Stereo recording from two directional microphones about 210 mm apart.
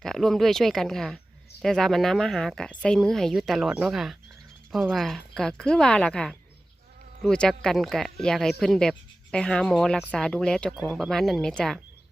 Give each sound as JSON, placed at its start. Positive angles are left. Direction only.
{"t": 0.0, "sound": "speech", "side_deg": 0}